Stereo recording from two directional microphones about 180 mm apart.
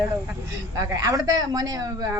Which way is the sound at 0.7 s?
20° right (ahead or behind).